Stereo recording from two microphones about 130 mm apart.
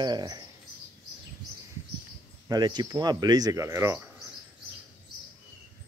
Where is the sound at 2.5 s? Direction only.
30° right (ahead or behind).